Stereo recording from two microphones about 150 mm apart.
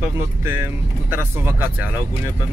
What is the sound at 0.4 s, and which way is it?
Speech, 15° right (ahead or behind).